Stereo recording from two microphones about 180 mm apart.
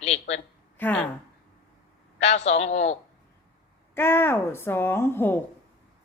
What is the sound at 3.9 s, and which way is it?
Speech, 10° left (ahead or behind).